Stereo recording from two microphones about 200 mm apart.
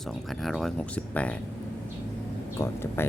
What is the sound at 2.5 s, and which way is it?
Speech, 15° left (ahead or behind).